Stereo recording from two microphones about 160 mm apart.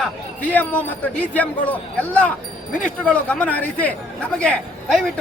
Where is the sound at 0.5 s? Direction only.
10° left (ahead or behind).